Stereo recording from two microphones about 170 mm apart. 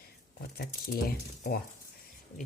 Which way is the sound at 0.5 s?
65° left (ahead or behind).